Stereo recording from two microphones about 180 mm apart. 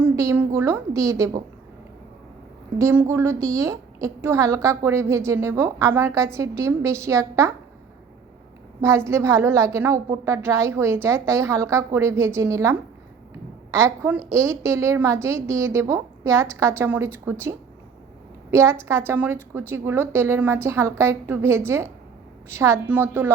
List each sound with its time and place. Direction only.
0.0 s a woman's voice: 15° right (ahead or behind)
2.7 s a woman's voice: 15° right (ahead or behind)
8.8 s a woman's voice: 15° right (ahead or behind)
13.7 s a woman's voice: 15° right (ahead or behind)
18.5 s a woman's voice: 15° right (ahead or behind)